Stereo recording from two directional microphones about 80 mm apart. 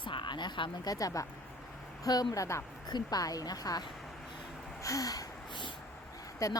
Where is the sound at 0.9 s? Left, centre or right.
Left.